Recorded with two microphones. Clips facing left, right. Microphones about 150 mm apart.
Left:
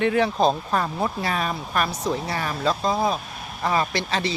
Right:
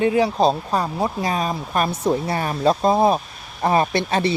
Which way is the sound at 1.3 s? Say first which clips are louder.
Right 3 dB; 25° right (ahead or behind).